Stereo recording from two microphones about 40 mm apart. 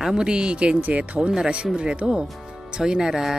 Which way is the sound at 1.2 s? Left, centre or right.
Centre.